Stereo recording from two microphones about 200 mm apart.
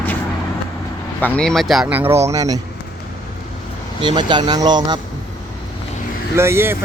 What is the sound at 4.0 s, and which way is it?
Speech, 20° right (ahead or behind).